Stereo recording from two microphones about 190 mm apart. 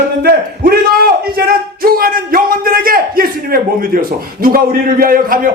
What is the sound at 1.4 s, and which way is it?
Speech, 50° right (ahead or behind).